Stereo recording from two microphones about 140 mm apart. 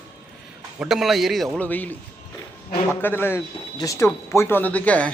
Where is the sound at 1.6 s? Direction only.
10° left (ahead or behind).